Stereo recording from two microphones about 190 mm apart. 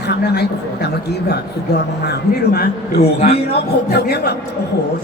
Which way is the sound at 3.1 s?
35° left (ahead or behind).